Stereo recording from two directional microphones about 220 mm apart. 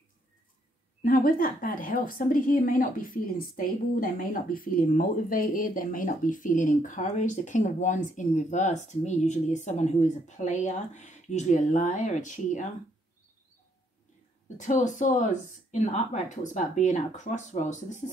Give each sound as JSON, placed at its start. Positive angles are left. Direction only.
{"t": 1.0, "sound": "a woman's voice", "side_deg": 40}
{"t": 14.6, "sound": "a woman's voice", "side_deg": 35}